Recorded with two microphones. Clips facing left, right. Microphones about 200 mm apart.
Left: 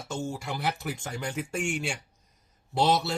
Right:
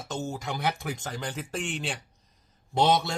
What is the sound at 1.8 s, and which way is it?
Speech, 35° right (ahead or behind).